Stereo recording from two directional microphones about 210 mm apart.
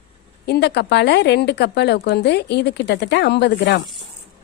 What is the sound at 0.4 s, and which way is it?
Speech, 50° left (ahead or behind).